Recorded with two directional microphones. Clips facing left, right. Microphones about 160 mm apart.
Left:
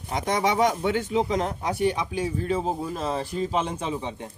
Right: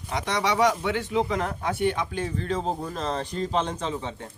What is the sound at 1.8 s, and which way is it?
Speech, 10° left (ahead or behind).